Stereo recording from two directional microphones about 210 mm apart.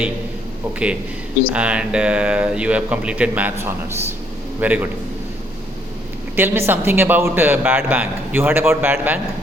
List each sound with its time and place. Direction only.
1.5 s speech: 5° right (ahead or behind)
6.3 s speech: 10° right (ahead or behind)